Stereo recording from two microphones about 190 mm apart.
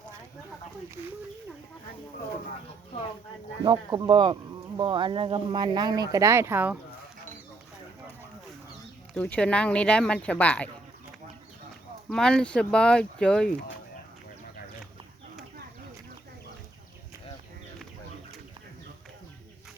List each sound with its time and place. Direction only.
3.6 s speech: 20° right (ahead or behind)
9.1 s speech: 5° left (ahead or behind)
12.0 s speech: 5° left (ahead or behind)